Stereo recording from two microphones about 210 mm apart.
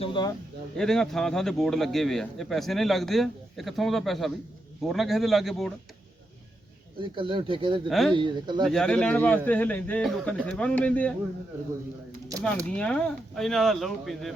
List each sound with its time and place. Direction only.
0.0 s speech: 20° left (ahead or behind)
0.8 s speech: centre (ahead or behind)
7.2 s speech: 25° right (ahead or behind)
7.9 s speech: centre (ahead or behind)
8.1 s speech: 20° right (ahead or behind)
8.6 s a man's voice: 5° left (ahead or behind)
12.6 s speech: 5° left (ahead or behind)